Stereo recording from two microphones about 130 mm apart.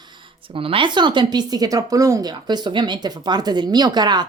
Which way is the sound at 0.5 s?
45° right (ahead or behind).